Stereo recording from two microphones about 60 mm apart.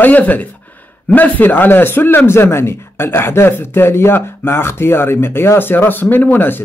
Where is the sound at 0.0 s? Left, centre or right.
Left.